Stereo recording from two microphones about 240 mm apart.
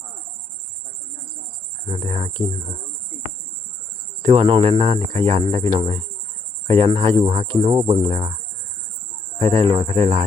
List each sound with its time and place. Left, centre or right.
1.9 s speech: right
4.2 s speech: right
9.4 s speech: right